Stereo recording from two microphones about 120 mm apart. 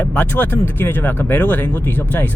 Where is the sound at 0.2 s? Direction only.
15° left (ahead or behind).